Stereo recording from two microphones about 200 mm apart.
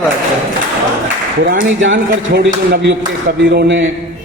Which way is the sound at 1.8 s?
65° right (ahead or behind).